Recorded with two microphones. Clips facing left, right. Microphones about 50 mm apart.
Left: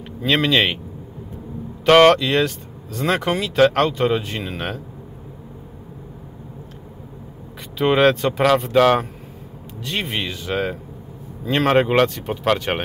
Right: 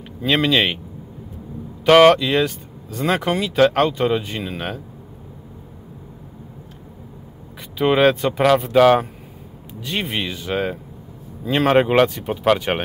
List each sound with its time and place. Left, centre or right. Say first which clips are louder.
0.2 s speech: even; centre
1.9 s speech: right 1 dB; centre
7.7 s speech: even; centre